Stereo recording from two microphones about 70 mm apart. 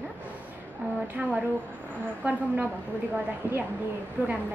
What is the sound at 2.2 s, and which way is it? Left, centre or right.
Speech, right.